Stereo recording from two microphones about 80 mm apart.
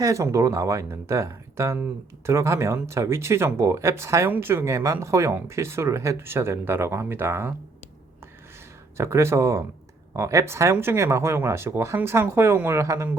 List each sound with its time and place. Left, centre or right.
0.0 s speech: right
9.0 s speech: right